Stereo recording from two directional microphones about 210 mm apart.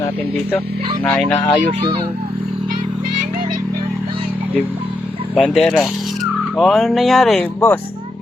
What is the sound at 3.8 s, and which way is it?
Music, 25° right (ahead or behind).